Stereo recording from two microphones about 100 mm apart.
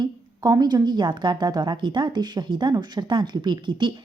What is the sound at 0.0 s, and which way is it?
Speech, 40° right (ahead or behind).